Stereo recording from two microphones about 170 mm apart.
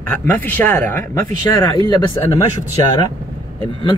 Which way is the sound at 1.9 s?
25° left (ahead or behind).